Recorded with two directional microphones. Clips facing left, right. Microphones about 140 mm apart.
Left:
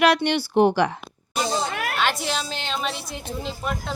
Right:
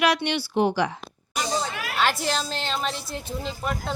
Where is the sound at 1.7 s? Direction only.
60° left (ahead or behind).